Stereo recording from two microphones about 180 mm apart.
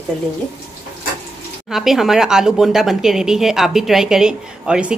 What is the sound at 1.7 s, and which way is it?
Speech, centre (ahead or behind).